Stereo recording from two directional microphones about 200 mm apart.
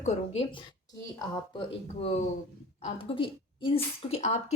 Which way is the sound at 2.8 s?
25° left (ahead or behind).